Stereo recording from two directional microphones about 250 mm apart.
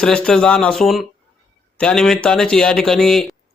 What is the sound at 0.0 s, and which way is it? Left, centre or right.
A man's voice, centre.